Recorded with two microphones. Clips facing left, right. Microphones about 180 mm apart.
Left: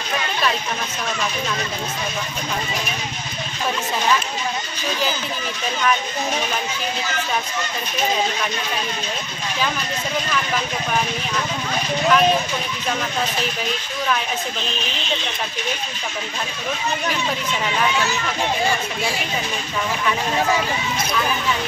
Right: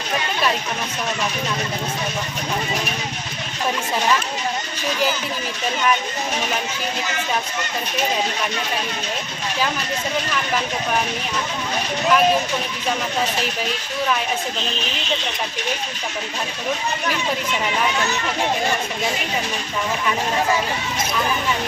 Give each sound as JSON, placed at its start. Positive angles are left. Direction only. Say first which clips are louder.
{"t": 12.1, "sound": "speech", "louder": "even", "side_deg": -5}